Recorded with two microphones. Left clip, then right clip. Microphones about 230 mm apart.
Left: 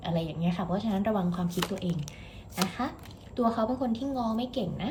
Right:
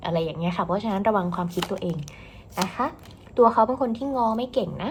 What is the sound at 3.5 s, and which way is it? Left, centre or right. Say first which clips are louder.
A woman's voice: right 9 dB; centre.